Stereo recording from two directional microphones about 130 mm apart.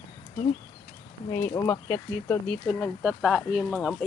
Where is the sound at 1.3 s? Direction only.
25° left (ahead or behind).